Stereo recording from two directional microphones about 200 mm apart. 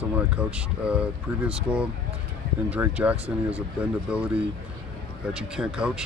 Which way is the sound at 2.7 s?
5° right (ahead or behind).